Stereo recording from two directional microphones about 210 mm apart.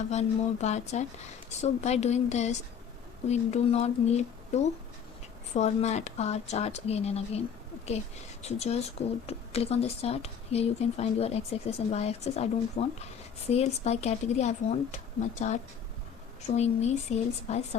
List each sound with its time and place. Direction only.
0.1 s speech: 35° left (ahead or behind)